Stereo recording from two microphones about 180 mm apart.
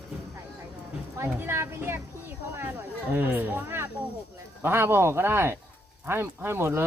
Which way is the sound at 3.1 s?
10° right (ahead or behind).